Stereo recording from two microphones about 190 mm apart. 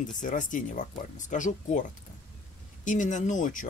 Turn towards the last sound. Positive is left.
turn(degrees=40)  # may be behind; listen again after turning